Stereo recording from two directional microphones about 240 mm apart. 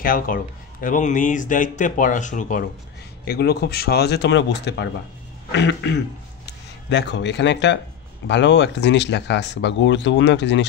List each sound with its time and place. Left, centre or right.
0.0 s speech: left